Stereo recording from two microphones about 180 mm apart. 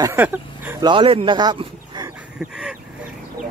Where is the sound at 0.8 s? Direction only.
25° right (ahead or behind).